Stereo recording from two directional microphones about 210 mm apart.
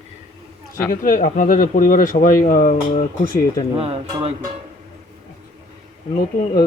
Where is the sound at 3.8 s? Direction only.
25° right (ahead or behind).